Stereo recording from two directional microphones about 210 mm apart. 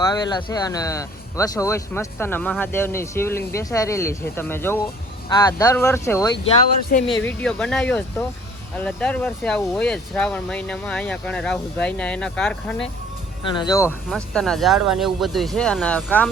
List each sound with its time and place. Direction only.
0.0 s speech: 20° left (ahead or behind); by 12.9 s 5° left (ahead or behind)
13.5 s speech: 20° left (ahead or behind)
14.1 s speech: 5° left (ahead or behind)